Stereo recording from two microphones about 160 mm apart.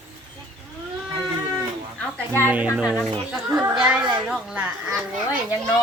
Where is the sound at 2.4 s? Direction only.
10° right (ahead or behind).